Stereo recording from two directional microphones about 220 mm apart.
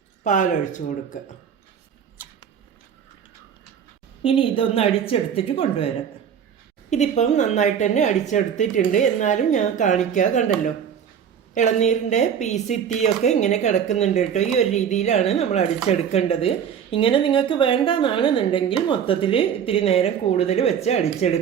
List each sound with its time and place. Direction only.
0.3 s speech: 35° left (ahead or behind)
4.2 s speech: 25° left (ahead or behind)
6.9 s speech: 30° left (ahead or behind)
11.5 s speech: 35° left (ahead or behind)